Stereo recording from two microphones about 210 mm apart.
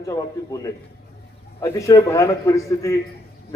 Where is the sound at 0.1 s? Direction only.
15° left (ahead or behind).